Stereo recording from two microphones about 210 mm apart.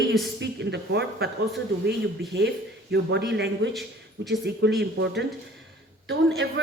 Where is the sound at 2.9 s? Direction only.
55° right (ahead or behind).